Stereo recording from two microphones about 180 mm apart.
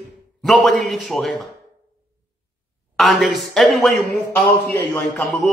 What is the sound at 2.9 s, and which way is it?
A man's voice, centre (ahead or behind).